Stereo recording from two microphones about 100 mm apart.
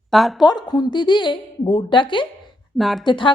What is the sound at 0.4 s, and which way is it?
A woman's voice, 45° left (ahead or behind).